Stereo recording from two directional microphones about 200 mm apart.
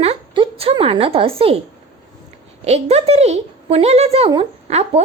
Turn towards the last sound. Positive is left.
turn(degrees=-30)  # may be behind; listen again after turning